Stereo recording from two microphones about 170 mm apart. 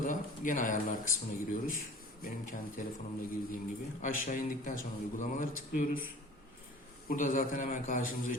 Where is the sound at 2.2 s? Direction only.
50° left (ahead or behind).